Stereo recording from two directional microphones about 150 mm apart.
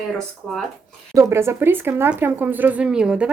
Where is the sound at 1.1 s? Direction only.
20° right (ahead or behind).